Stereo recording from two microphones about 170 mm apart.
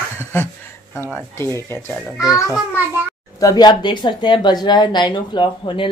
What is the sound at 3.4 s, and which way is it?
Speech, 20° left (ahead or behind).